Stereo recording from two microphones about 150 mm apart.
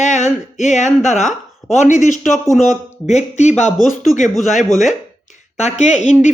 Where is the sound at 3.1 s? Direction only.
50° left (ahead or behind).